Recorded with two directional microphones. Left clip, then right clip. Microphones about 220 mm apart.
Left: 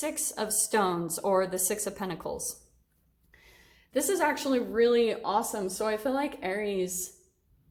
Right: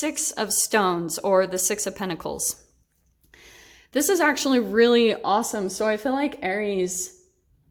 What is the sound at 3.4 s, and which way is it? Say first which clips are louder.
Speech: right 9 dB; 50° right (ahead or behind).